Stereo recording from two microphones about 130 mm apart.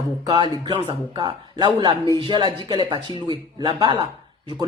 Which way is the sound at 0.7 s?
50° right (ahead or behind).